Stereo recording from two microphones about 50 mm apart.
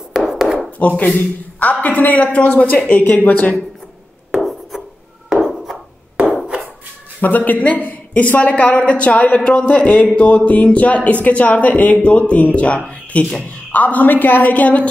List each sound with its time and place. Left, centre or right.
0.1 s chopping: centre
0.7 s a woman's voice: left
4.3 s rub: centre
5.3 s a sound: centre
7.2 s a woman's voice: left; by 13.4 s centre
13.7 s a woman's voice: left